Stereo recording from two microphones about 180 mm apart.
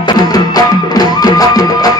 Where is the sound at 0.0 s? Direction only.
20° left (ahead or behind).